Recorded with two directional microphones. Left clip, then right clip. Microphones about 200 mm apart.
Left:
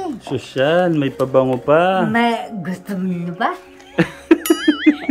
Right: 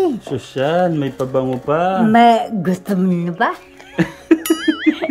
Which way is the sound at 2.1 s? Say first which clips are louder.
Right 7 dB; 35° right (ahead or behind).